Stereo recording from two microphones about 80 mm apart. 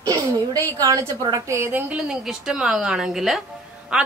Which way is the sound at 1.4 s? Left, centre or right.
Right.